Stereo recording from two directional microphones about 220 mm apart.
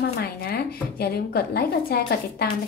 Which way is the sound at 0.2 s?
45° left (ahead or behind).